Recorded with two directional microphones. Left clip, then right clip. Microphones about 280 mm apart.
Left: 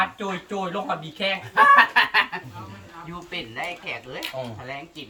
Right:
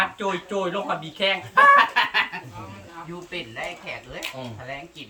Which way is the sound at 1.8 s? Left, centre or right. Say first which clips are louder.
Left 2 dB; centre.